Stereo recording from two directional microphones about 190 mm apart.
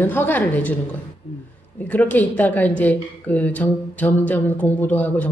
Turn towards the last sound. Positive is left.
turn(degrees=10)  # may be behind; listen again after turning